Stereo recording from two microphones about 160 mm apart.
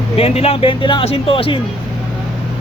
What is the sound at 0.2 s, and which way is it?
Speech, 40° left (ahead or behind).